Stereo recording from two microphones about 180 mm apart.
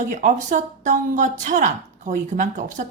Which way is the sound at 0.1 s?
45° right (ahead or behind).